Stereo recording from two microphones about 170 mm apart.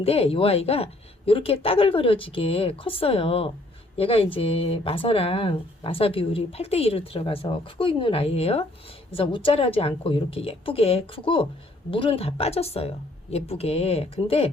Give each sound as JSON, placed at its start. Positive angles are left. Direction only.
{"t": 0.0, "sound": "speech", "side_deg": 35}